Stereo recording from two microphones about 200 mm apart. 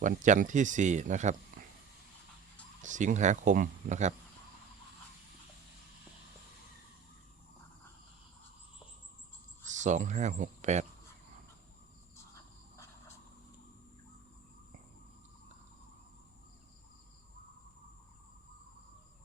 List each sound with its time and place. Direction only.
0.0 s speech: 40° right (ahead or behind)
2.8 s speech: 40° right (ahead or behind)
9.6 s speech: 35° right (ahead or behind)